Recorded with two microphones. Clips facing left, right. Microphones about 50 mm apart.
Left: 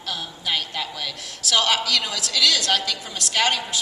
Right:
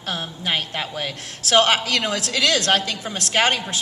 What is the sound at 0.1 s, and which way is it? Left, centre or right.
A man's voice, right.